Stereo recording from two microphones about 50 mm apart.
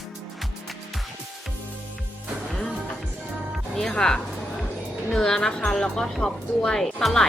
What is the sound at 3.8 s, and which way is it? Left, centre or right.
Speech, centre.